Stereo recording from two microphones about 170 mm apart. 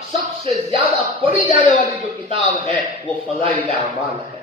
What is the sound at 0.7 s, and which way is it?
Speech, 35° right (ahead or behind).